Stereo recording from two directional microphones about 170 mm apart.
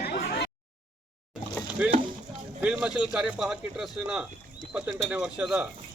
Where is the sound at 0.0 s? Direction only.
75° left (ahead or behind).